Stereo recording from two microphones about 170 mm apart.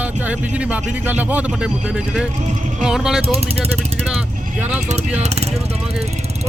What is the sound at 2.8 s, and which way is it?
Speech, 5° right (ahead or behind).